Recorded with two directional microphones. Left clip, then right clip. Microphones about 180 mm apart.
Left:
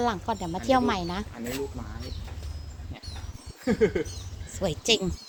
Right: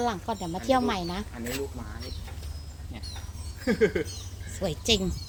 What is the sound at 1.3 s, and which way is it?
Speech, 40° left (ahead or behind).